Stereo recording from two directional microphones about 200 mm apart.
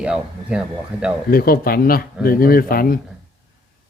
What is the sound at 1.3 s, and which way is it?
Speech, 50° left (ahead or behind).